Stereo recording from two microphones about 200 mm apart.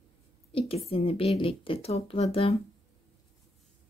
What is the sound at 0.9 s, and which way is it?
Speech, 30° left (ahead or behind).